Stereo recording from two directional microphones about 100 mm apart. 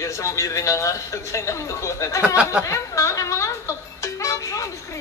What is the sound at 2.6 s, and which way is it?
Music, 30° left (ahead or behind).